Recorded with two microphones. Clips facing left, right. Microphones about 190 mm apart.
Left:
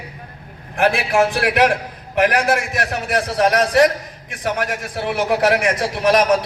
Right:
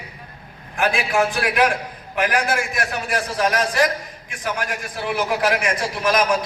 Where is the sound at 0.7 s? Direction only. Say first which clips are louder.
Left 4 dB; 65° left (ahead or behind).